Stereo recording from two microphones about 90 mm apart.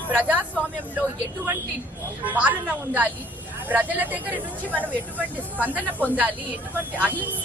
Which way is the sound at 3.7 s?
20° right (ahead or behind).